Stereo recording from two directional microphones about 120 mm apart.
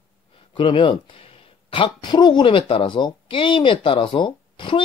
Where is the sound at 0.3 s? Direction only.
45° left (ahead or behind).